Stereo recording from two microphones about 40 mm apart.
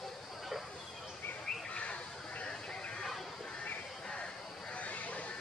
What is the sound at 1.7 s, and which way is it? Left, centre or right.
Bird, left.